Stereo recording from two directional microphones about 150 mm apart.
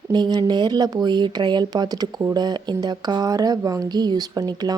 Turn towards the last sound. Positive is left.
turn(degrees=-25)  # may be behind; listen again after turning